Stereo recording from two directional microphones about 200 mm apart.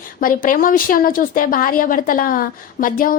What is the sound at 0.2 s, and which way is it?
A woman's voice, 45° left (ahead or behind).